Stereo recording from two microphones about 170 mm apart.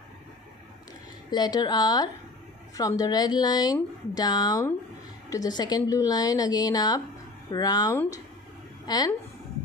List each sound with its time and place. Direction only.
1.3 s speech: 25° left (ahead or behind)